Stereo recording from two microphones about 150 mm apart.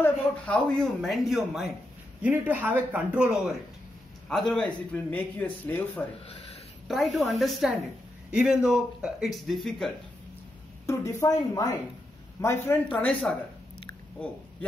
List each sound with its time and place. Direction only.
0.0 s a man's voice: 10° left (ahead or behind)
2.2 s a man's voice: 10° right (ahead or behind)
4.3 s a man's voice: 5° left (ahead or behind)
6.9 s a man's voice: centre (ahead or behind)
10.9 s a man's voice: 20° left (ahead or behind)
13.3 s a man's voice: 5° left (ahead or behind)